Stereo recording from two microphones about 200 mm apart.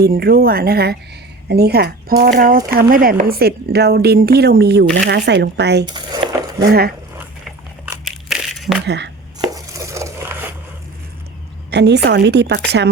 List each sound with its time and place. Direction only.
0.0 s a woman's voice: 50° right (ahead or behind)
8.0 s crushing: centre (ahead or behind)
8.9 s speech: 60° right (ahead or behind)
9.4 s chopping: 15° right (ahead or behind)
11.7 s a woman's voice: 55° right (ahead or behind)